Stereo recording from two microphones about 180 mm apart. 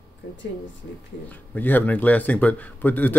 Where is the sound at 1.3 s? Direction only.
10° left (ahead or behind).